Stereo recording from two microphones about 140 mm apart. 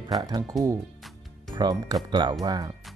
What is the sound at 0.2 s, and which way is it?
Speech, 30° right (ahead or behind).